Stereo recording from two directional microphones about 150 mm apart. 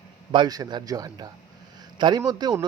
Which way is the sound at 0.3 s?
30° right (ahead or behind).